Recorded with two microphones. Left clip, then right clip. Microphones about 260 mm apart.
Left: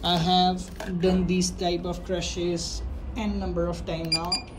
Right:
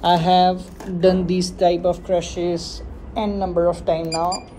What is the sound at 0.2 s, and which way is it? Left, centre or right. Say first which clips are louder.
Speech: right 7 dB; left.